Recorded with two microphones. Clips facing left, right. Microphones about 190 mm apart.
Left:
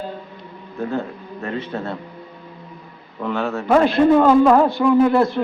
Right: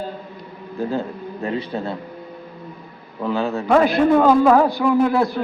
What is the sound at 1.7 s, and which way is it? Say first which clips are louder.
Speech: right 1 dB; 15° right (ahead or behind).